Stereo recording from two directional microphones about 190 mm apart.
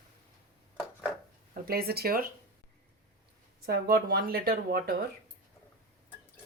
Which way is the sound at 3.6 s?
55° right (ahead or behind).